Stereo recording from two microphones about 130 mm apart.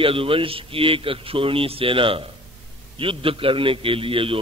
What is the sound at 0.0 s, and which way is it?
A man's voice, 45° right (ahead or behind).